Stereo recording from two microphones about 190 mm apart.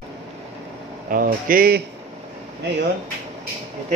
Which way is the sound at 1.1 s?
50° right (ahead or behind).